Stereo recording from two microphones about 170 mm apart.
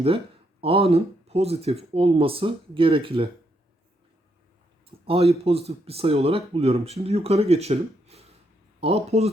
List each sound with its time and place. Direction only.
0.6 s speech: 35° right (ahead or behind)
4.9 s speech: 35° right (ahead or behind)